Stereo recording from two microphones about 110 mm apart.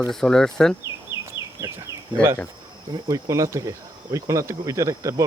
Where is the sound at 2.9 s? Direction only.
35° right (ahead or behind).